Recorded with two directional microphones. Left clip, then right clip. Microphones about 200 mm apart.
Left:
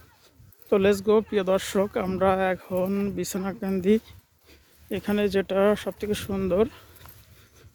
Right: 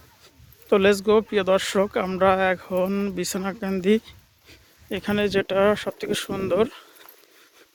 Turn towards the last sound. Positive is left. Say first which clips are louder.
# right 2 dB
turn(degrees=5)  # may be behind; listen again after turning